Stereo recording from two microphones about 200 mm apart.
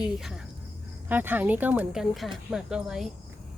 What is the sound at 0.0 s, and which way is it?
Speech, centre (ahead or behind).